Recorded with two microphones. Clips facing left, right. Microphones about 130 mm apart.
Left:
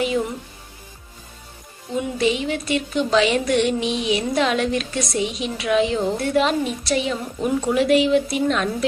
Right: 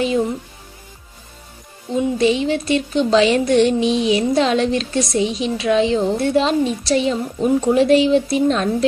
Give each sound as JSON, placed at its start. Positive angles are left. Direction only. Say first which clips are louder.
{"t": 2.0, "sound": "speech", "louder": "right 5 dB", "side_deg": -30}